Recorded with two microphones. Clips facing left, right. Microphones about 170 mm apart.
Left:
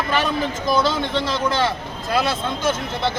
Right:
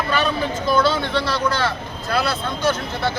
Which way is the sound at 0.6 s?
15° left (ahead or behind).